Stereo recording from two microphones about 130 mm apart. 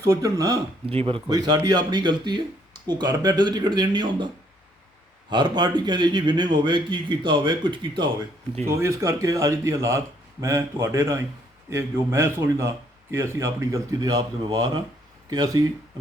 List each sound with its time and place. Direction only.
0.0 s a man's voice: 20° right (ahead or behind)
0.9 s speech: 45° right (ahead or behind)
1.3 s a man's voice: 30° right (ahead or behind)
5.3 s a man's voice: 35° right (ahead or behind)
8.7 s a man's voice: 20° right (ahead or behind)